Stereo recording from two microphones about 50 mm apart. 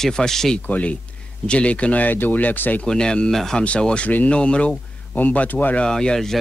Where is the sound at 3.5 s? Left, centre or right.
Left.